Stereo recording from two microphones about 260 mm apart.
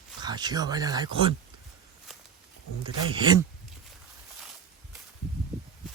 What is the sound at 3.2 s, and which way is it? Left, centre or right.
Speech, centre.